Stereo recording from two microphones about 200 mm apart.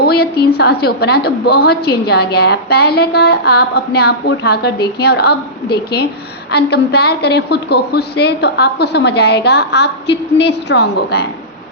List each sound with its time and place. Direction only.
0.0 s a woman's voice: 50° left (ahead or behind)